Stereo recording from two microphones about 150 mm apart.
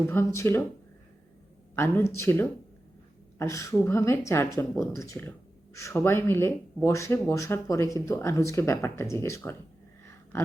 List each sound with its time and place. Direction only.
0.1 s speech: 15° left (ahead or behind)
1.7 s speech: 15° left (ahead or behind)